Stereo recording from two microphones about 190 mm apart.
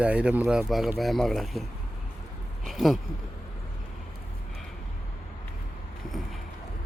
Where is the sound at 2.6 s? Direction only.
Centre (ahead or behind).